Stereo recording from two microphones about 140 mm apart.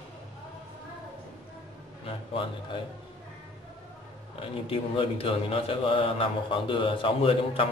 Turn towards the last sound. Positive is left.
turn(degrees=40)  # may be behind; listen again after turning